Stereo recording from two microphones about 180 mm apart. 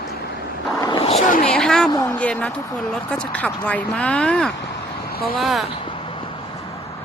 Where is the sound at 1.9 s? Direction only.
20° left (ahead or behind).